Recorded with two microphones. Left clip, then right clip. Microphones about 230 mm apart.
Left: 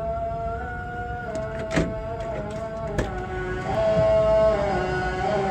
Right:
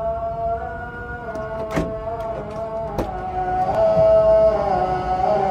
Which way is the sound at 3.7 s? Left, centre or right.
Left.